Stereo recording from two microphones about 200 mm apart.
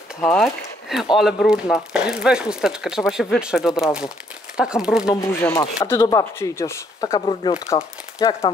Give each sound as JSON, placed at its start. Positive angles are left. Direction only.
{"t": 0.2, "sound": "speech", "side_deg": 5}
{"t": 5.1, "sound": "speech", "side_deg": 15}